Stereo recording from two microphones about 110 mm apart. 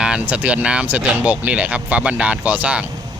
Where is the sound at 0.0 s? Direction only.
10° right (ahead or behind).